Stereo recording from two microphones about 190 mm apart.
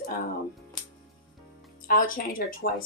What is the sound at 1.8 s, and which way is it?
A woman's voice, 45° left (ahead or behind).